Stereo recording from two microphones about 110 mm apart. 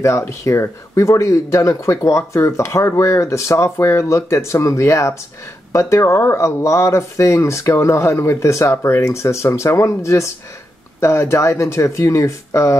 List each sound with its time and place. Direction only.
0.0 s speech: 25° left (ahead or behind)